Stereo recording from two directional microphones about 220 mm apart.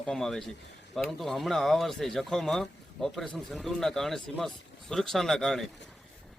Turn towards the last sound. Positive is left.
turn(degrees=0)  # may be behind; listen again after turning